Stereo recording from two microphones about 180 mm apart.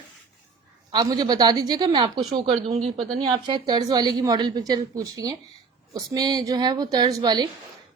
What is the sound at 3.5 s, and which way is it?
Speech, 20° right (ahead or behind).